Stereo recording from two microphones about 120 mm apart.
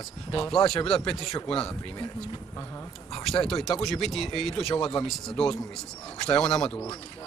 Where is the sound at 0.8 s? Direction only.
5° left (ahead or behind).